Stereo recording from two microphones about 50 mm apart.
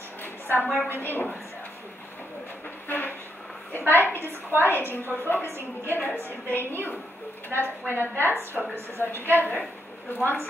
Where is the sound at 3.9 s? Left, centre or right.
Left.